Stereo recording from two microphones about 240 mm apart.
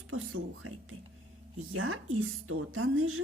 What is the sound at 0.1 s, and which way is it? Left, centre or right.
Speech, right.